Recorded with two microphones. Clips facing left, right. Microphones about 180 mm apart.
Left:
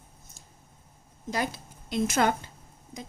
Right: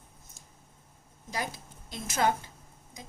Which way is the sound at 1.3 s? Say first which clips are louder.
Left 5 dB; 70° left (ahead or behind).